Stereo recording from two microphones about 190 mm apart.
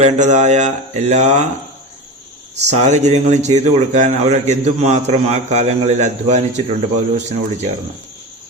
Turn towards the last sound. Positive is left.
turn(degrees=-35)  # may be behind; listen again after turning